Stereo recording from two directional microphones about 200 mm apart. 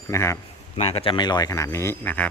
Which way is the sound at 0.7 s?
30° left (ahead or behind).